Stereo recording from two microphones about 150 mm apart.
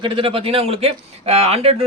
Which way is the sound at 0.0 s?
35° right (ahead or behind).